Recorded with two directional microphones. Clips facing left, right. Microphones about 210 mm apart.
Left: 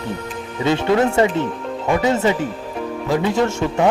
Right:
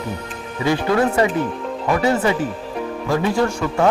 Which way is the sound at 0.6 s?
25° left (ahead or behind).